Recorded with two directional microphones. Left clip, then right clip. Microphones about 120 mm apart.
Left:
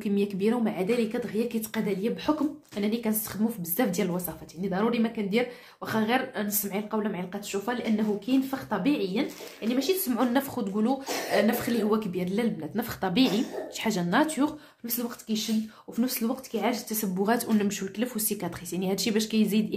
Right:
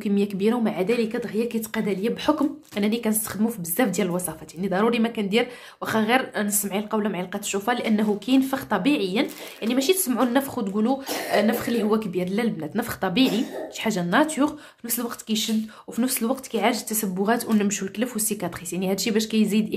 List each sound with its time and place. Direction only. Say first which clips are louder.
0.0 s a woman's voice: right 4 dB; 30° right (ahead or behind)
2.2 s a woman's voice: right 5 dB; 50° right (ahead or behind)
7.5 s speech: right 6 dB; 50° right (ahead or behind)
10.1 s speech: right 4 dB; 25° right (ahead or behind)
13.1 s a woman's voice: right 2 dB; 15° right (ahead or behind)
15.0 s a woman's voice: right 5 dB; 40° right (ahead or behind)
17.2 s a woman's voice: right 3 dB; 15° right (ahead or behind)
17.6 s speech: right 4 dB; 25° right (ahead or behind)